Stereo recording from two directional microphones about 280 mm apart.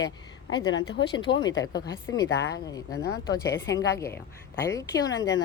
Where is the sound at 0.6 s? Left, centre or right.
Left.